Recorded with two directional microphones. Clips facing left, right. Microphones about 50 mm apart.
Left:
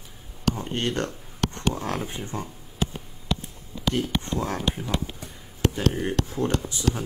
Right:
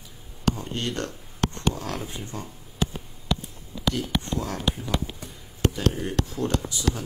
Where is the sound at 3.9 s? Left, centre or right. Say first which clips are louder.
Left 1 dB; left.